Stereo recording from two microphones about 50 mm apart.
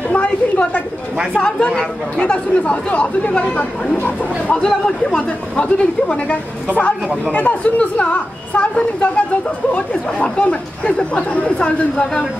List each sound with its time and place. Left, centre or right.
0.1 s a sound: left
1.3 s speech: left
7.3 s speech: left